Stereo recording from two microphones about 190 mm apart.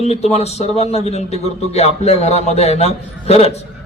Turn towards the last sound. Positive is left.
turn(degrees=35)  # may be behind; listen again after turning